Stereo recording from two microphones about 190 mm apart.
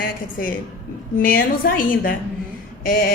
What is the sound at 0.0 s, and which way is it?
A woman's voice, 50° left (ahead or behind).